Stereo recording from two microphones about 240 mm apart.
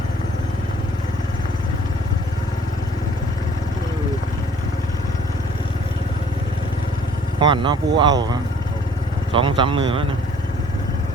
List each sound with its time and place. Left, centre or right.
7.3 s speech: centre